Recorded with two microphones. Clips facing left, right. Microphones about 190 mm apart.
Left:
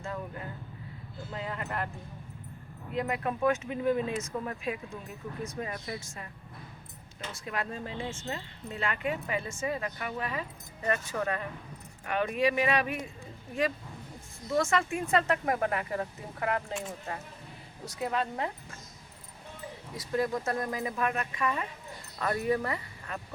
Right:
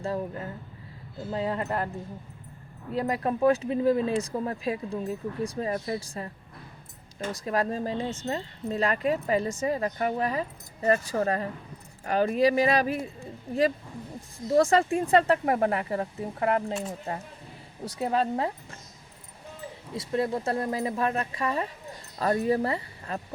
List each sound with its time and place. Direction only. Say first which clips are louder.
0.0 s speech: right 7 dB; 35° right (ahead or behind)
2.9 s speech: right 4 dB; 35° right (ahead or behind)
14.5 s speech: right 7 dB; 35° right (ahead or behind)
19.9 s speech: right 3 dB; 25° right (ahead or behind)